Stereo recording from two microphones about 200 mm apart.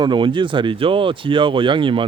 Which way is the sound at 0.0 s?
25° right (ahead or behind).